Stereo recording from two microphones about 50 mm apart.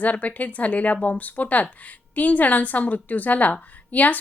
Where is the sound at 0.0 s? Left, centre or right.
Left.